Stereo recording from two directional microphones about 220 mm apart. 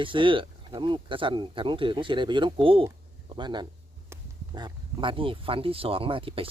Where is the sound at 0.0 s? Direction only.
20° right (ahead or behind).